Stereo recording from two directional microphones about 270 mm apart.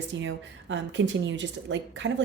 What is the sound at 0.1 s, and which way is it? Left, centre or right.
A woman's voice, right.